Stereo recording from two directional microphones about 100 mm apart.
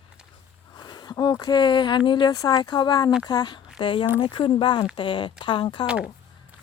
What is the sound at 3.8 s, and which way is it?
Speech, 55° left (ahead or behind).